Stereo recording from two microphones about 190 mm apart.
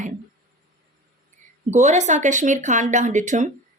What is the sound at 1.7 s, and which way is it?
A woman's voice, 35° right (ahead or behind).